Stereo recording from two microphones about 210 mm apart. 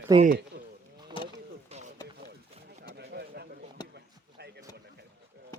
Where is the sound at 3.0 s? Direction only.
50° right (ahead or behind).